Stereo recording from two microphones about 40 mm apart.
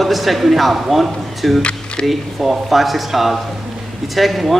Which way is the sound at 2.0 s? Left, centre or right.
Centre.